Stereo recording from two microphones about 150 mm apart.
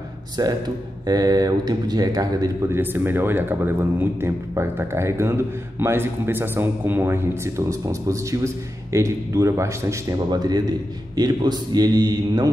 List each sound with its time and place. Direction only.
0.4 s a man's voice: 25° right (ahead or behind)